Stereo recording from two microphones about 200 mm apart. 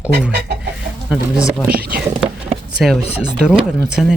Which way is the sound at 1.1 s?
5° right (ahead or behind).